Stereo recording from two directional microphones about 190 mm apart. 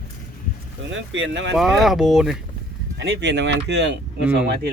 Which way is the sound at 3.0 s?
65° right (ahead or behind).